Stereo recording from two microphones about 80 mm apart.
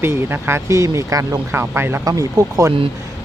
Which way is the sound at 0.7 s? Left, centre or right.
Right.